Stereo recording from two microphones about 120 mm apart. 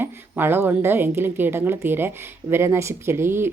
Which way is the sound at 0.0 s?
20° right (ahead or behind).